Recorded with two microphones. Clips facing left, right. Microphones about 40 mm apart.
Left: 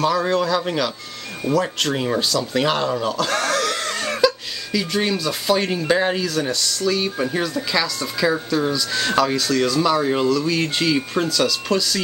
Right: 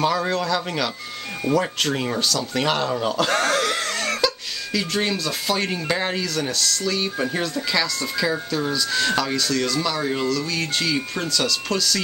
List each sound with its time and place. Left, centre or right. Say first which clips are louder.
0.2 s speech: left 3 dB; centre
3.5 s wheeze: even; centre
3.8 s a sound: left 3 dB; centre
4.7 s speech: left 2 dB; centre